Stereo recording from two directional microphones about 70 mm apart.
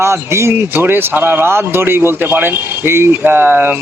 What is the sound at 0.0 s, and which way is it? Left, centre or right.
Speech, right.